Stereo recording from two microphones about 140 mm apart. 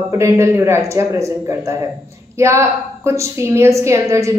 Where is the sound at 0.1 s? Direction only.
20° right (ahead or behind).